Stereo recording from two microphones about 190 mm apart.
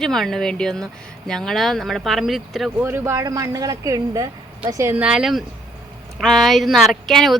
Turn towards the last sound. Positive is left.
turn(degrees=0)  # may be behind; listen again after turning